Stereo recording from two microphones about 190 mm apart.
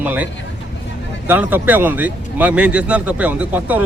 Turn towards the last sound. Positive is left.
turn(degrees=-10)  # may be behind; listen again after turning